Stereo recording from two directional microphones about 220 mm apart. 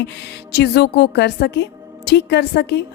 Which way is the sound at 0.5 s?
50° left (ahead or behind).